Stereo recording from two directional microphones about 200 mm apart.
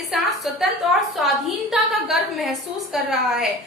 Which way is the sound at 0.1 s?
Centre (ahead or behind).